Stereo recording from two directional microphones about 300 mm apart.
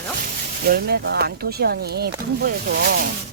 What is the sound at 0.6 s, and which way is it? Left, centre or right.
Speech, right.